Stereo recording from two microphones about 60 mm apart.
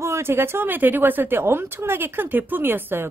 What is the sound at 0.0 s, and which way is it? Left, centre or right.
A woman's voice, right.